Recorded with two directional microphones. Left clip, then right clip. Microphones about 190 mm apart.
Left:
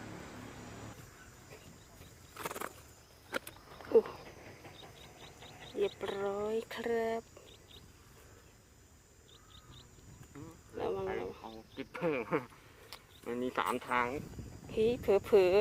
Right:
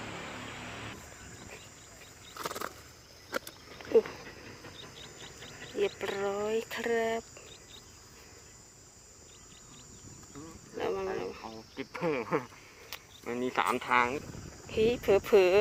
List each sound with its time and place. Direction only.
0.0 s vehicle: 35° right (ahead or behind)
2.4 s a sound: 5° left (ahead or behind)
3.2 s walk: 10° left (ahead or behind)
5.6 s cricket: 10° left (ahead or behind)
10.8 s a sound: 5° left (ahead or behind)
13.2 s cricket: 15° right (ahead or behind); by 14.2 s 45° right (ahead or behind)
14.7 s speech: 5° left (ahead or behind)